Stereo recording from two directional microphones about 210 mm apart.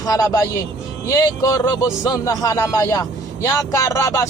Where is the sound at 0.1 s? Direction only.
15° left (ahead or behind).